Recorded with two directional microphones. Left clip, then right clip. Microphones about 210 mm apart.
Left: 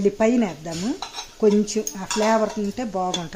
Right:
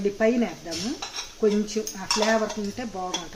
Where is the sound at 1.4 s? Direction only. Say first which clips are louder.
Left 5 dB; 40° left (ahead or behind).